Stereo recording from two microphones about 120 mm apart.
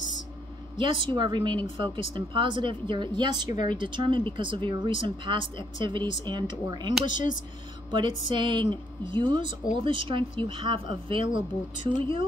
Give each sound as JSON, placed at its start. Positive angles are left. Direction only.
{"t": 0.7, "sound": "speech", "side_deg": -45}
{"t": 7.1, "sound": "speech", "side_deg": 90}
{"t": 7.9, "sound": "speech", "side_deg": -40}